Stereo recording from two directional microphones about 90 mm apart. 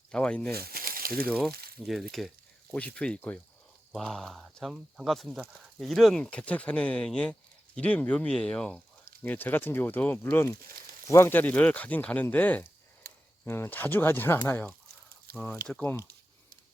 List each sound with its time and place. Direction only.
0.1 s speech: 10° left (ahead or behind)
1.4 s speech: centre (ahead or behind)
2.7 s speech: 15° left (ahead or behind)
3.9 s speech: 5° left (ahead or behind)
9.2 s speech: 20° left (ahead or behind)
15.4 s speech: 5° left (ahead or behind)